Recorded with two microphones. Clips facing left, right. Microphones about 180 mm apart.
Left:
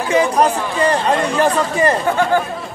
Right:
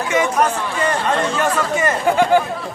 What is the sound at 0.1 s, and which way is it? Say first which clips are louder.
Speech: left 3 dB; 35° left (ahead or behind).